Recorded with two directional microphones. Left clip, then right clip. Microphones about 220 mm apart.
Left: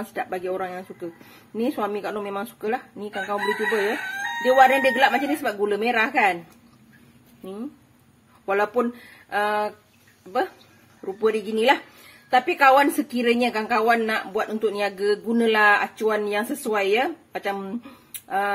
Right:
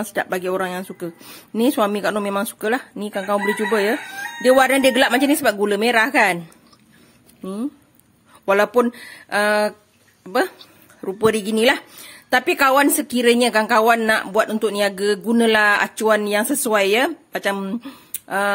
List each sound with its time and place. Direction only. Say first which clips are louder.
0.0 s a woman's voice: right 6 dB; 45° right (ahead or behind)
8.5 s a woman's voice: right 6 dB; 55° right (ahead or behind)
9.3 s a sound: right 5 dB; 55° right (ahead or behind)
11.1 s a woman's voice: right 4 dB; 50° right (ahead or behind)